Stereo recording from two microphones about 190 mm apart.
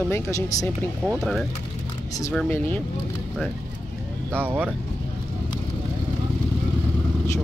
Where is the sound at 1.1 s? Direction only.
Centre (ahead or behind).